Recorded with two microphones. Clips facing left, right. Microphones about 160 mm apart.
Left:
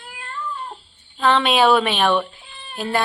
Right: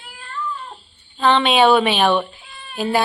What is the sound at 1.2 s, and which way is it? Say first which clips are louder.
Speech: right 2 dB; centre (ahead or behind).